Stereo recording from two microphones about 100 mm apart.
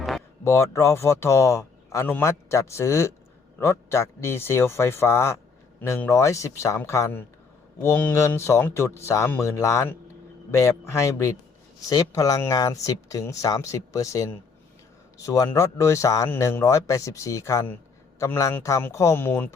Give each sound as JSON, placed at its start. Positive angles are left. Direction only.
{"t": 0.4, "sound": "speech", "side_deg": 30}
{"t": 2.5, "sound": "speech", "side_deg": 30}